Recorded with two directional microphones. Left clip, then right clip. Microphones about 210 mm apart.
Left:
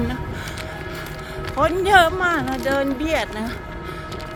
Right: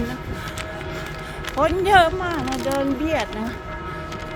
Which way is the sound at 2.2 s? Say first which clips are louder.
Left 4 dB; 30° left (ahead or behind).